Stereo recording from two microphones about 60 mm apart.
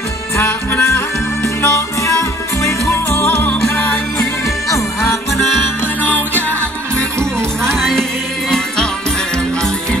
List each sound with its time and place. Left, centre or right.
0.4 s music: left
0.8 s music: left
2.9 s music: left
7.6 s music: centre